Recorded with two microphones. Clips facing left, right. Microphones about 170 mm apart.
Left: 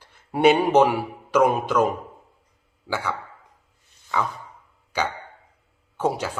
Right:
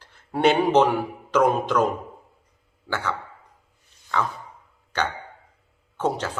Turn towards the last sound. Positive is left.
turn(degrees=10)  # may be behind; listen again after turning